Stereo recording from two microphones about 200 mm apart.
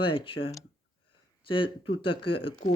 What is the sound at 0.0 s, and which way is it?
Speech, 25° left (ahead or behind).